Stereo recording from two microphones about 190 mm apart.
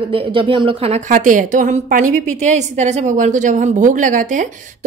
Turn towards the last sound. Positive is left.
turn(degrees=-40)  # may be behind; listen again after turning